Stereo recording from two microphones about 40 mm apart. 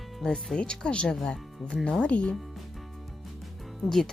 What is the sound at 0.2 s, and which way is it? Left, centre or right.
Speech, centre.